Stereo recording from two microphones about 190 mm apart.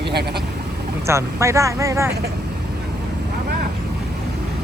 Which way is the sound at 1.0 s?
15° right (ahead or behind).